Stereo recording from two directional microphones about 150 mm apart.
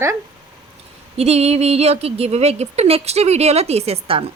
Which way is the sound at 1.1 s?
45° right (ahead or behind).